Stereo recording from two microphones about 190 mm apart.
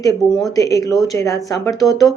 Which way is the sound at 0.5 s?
15° left (ahead or behind).